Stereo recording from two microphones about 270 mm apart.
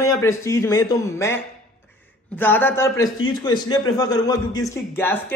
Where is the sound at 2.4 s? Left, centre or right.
Centre.